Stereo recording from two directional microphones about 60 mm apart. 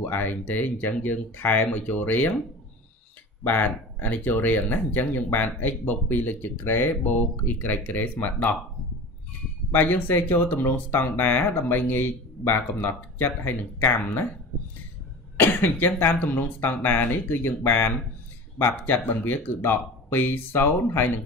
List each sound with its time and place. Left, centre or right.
0.0 s speech: left
3.4 s speech: left
9.7 s speech: left
15.4 s speech: left